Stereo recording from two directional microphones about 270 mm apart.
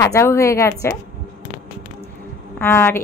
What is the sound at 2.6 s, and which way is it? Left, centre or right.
Speech, centre.